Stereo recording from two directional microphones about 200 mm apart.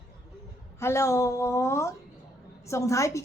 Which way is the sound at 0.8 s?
15° left (ahead or behind).